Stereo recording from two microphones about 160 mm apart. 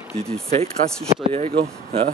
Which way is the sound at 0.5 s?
40° right (ahead or behind).